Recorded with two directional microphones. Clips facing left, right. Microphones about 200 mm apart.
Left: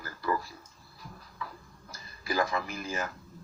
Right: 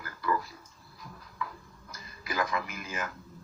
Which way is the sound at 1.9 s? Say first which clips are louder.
Left 4 dB; 35° left (ahead or behind).